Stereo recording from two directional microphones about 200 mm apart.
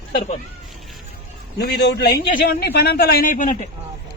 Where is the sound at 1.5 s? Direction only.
55° left (ahead or behind).